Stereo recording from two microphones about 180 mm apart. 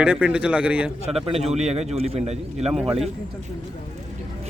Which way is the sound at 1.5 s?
35° right (ahead or behind).